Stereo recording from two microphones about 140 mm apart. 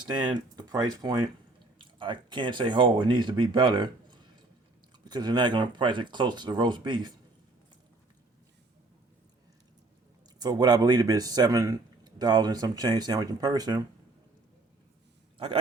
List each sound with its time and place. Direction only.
0.0 s a man's voice: 30° right (ahead or behind)
10.4 s a man's voice: 30° right (ahead or behind)